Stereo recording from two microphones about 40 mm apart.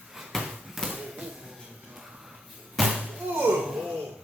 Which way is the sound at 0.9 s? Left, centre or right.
Right.